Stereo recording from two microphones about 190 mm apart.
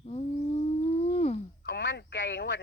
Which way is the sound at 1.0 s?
30° left (ahead or behind).